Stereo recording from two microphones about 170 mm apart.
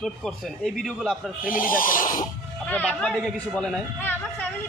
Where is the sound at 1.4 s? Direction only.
55° left (ahead or behind).